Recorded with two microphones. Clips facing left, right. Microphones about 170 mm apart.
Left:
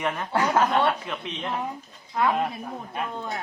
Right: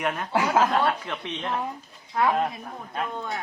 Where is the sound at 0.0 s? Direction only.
5° right (ahead or behind).